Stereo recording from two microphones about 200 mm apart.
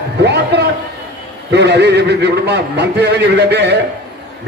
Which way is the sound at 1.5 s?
55° right (ahead or behind).